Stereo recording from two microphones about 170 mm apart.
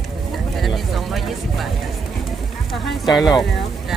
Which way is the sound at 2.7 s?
Centre (ahead or behind).